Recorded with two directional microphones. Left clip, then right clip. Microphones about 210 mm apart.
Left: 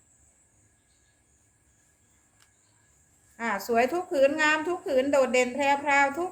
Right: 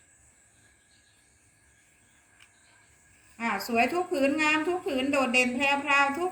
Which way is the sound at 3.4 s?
40° left (ahead or behind).